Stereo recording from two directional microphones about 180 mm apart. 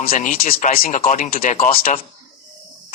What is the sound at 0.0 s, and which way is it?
Speech, 50° left (ahead or behind).